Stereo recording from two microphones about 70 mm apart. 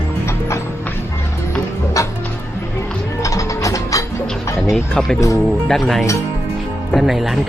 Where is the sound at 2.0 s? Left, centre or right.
Left.